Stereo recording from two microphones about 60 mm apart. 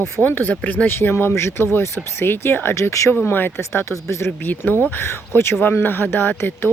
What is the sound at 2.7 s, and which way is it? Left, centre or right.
Speech, left.